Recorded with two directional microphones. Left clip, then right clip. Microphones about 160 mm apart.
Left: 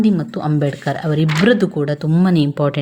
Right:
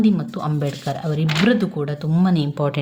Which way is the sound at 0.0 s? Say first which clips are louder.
Left 3 dB; 30° left (ahead or behind).